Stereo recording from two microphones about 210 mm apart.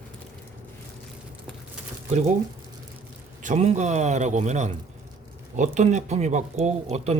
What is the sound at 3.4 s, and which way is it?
Speech, 35° right (ahead or behind).